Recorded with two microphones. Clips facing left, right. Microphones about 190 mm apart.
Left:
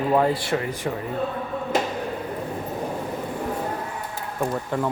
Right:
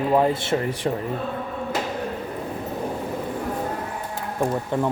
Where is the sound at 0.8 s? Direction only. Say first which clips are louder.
Right 5 dB; 35° right (ahead or behind).